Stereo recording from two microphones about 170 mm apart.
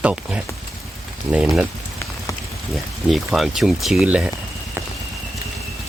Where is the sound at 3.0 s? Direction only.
Centre (ahead or behind).